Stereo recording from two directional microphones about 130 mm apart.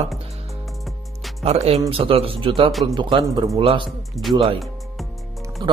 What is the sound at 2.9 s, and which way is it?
Speech, 35° right (ahead or behind).